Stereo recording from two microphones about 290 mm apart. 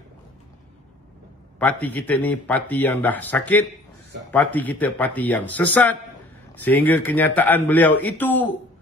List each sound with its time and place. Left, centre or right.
1.6 s speech: centre